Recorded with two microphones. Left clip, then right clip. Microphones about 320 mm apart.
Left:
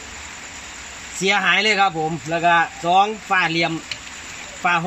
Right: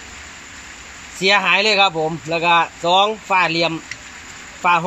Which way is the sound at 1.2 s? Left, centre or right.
Centre.